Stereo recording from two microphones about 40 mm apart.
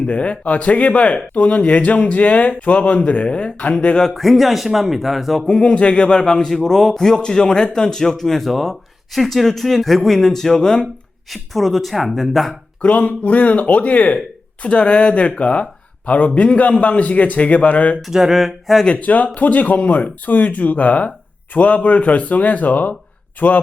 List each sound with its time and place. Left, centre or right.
0.0 s speech: left
4.1 s speech: centre
5.6 s speech: left; by 7.0 s centre
7.0 s speech: centre
11.3 s speech: centre
12.8 s speech: left
14.6 s speech: left
18.1 s speech: centre
18.9 s speech: left